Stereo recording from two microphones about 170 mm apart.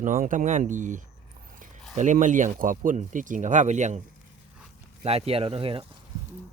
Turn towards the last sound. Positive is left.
turn(degrees=-35)  # may be behind; listen again after turning